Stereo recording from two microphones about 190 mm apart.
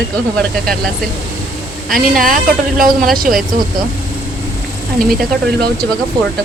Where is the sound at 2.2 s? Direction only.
45° right (ahead or behind).